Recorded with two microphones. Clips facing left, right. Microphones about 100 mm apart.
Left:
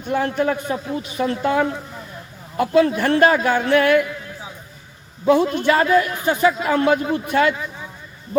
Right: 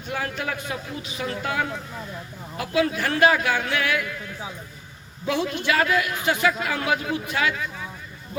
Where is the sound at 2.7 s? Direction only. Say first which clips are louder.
Left 6 dB; 40° left (ahead or behind).